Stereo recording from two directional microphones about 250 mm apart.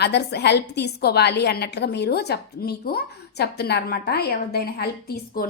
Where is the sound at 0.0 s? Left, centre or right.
Left.